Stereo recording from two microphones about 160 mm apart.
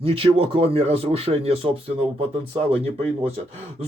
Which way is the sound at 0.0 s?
35° right (ahead or behind).